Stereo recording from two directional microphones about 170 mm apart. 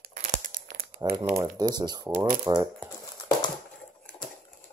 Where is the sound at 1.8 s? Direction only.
25° right (ahead or behind).